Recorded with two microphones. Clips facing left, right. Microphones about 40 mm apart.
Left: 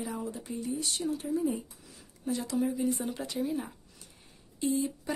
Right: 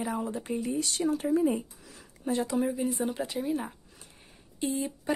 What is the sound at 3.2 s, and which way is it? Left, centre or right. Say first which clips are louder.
Speech: right 2 dB; centre.